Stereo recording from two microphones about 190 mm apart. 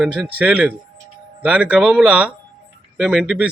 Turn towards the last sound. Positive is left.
turn(degrees=-5)  # may be behind; listen again after turning